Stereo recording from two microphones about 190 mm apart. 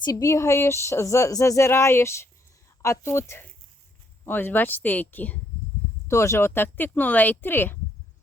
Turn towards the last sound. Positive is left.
turn(degrees=10)  # may be behind; listen again after turning